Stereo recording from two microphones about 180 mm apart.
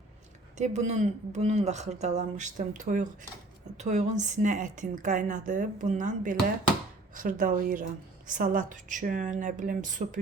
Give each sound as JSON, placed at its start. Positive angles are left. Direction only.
{"t": 0.5, "sound": "a woman's voice", "side_deg": -40}